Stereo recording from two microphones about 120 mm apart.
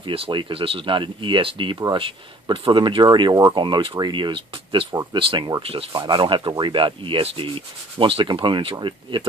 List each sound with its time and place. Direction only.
0.0 s sanding: 45° right (ahead or behind)
1.8 s speech: 40° right (ahead or behind)
6.5 s sanding: 40° right (ahead or behind)